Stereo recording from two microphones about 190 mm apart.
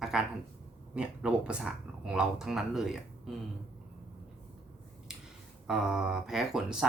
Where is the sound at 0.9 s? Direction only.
5° right (ahead or behind).